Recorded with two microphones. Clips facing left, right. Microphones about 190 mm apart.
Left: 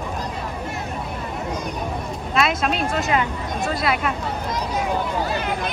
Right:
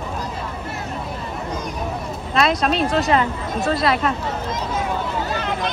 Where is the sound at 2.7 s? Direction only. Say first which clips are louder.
Right 4 dB; 35° right (ahead or behind).